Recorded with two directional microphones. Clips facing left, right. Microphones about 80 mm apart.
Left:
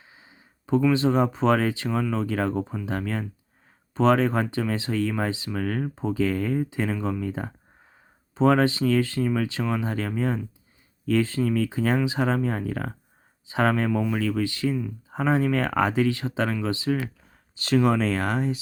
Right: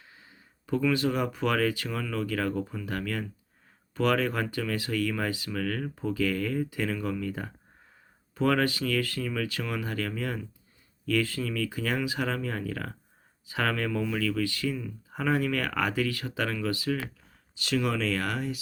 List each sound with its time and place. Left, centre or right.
0.7 s speech: left
17.5 s speech: left